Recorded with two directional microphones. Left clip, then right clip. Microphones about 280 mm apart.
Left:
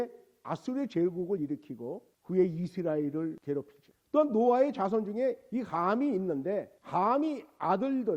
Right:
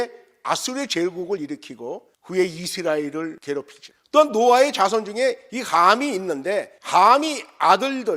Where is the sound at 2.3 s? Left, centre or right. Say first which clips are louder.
Right 7 dB; centre.